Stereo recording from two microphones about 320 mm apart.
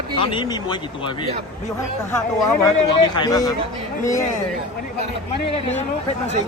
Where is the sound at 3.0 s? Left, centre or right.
Centre.